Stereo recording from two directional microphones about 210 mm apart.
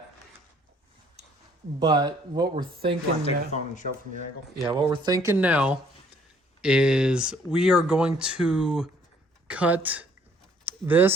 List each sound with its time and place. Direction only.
1.8 s speech: 20° right (ahead or behind)
3.2 s speech: 30° left (ahead or behind)
4.6 s speech: 20° right (ahead or behind)